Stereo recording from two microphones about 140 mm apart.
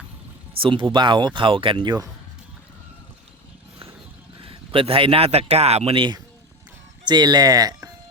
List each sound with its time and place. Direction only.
0.6 s speech: 35° right (ahead or behind)
4.4 s speech: 40° right (ahead or behind)